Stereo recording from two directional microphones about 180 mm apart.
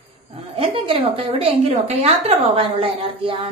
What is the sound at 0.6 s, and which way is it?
A woman's voice, 30° right (ahead or behind).